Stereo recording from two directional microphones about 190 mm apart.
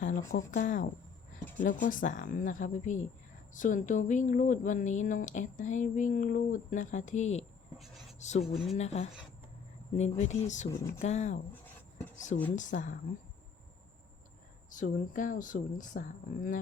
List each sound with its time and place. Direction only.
0.3 s speech: 40° left (ahead or behind)
10.7 s speech: 15° left (ahead or behind)
11.0 s speech: 35° left (ahead or behind)
11.5 s a sound: 10° left (ahead or behind)
12.1 s speech: 40° left (ahead or behind)
14.7 s speech: 45° left (ahead or behind)